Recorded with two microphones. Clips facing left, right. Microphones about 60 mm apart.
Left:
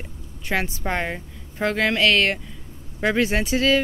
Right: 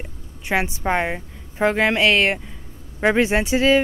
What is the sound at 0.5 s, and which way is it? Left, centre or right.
Speech, centre.